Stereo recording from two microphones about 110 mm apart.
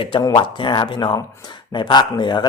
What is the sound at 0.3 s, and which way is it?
A man's voice, 45° left (ahead or behind).